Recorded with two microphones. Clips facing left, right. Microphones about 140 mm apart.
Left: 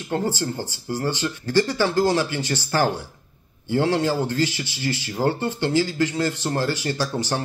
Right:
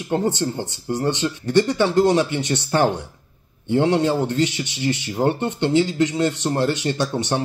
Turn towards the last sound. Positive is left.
turn(degrees=-25)  # may be behind; listen again after turning